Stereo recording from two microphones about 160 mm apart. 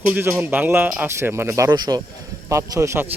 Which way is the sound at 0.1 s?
15° right (ahead or behind).